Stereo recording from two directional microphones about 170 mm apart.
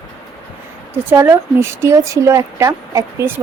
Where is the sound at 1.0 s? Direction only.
15° right (ahead or behind).